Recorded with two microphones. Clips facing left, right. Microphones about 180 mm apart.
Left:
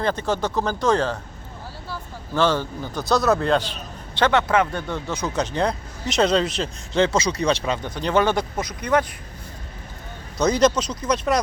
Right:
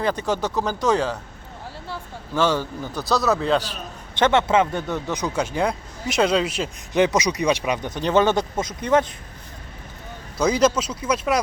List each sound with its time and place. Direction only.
0.0 s speech: 10° right (ahead or behind)
2.3 s a man's voice: 10° right (ahead or behind)
4.2 s speech: 25° right (ahead or behind)
10.3 s speech: 5° right (ahead or behind)